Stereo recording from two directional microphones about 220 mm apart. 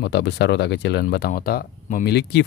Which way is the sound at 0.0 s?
50° left (ahead or behind).